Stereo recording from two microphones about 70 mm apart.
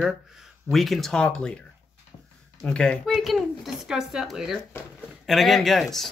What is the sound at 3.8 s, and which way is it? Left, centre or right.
Speech, centre.